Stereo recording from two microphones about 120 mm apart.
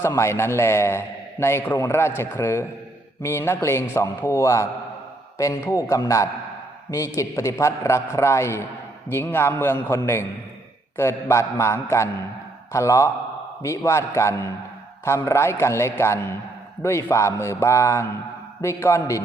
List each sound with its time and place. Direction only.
0.0 s a man's voice: 20° left (ahead or behind)